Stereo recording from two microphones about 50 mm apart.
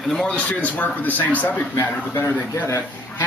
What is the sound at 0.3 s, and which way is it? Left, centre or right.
Speech, left.